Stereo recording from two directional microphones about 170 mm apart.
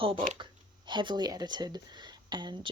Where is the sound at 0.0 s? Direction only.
30° right (ahead or behind).